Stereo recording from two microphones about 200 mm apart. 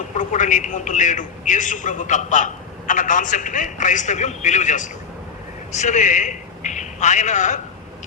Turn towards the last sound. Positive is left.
turn(degrees=35)  # may be behind; listen again after turning